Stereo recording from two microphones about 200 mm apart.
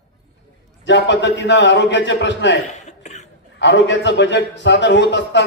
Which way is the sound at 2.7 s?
35° left (ahead or behind).